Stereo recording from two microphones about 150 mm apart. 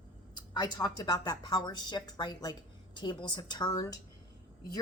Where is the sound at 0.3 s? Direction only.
30° left (ahead or behind).